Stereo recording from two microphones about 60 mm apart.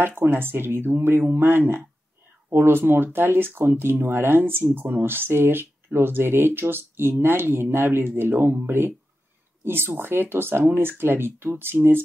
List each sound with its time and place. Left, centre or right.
0.2 s speech: right